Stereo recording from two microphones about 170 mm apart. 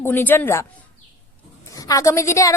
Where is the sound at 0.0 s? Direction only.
10° left (ahead or behind).